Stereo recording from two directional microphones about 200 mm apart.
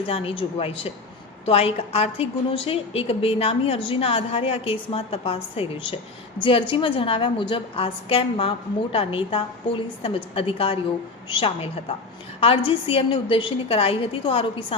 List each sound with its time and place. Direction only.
0.0 s a woman's voice: 30° left (ahead or behind)